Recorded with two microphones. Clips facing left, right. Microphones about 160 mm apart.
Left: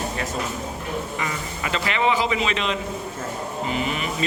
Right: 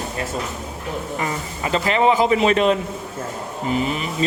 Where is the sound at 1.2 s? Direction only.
40° right (ahead or behind).